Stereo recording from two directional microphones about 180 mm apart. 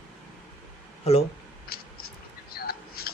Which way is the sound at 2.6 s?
60° left (ahead or behind).